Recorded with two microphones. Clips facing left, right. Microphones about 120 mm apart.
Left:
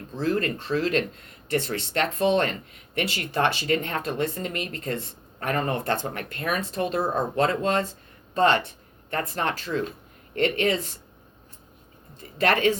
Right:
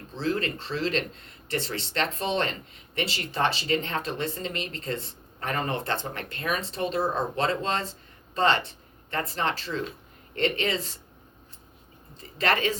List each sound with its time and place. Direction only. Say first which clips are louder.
0.2 s speech: left 3 dB; 45° left (ahead or behind)
12.4 s speech: left 4 dB; 50° left (ahead or behind)